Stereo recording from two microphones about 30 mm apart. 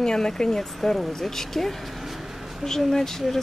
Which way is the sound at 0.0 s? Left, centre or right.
Centre.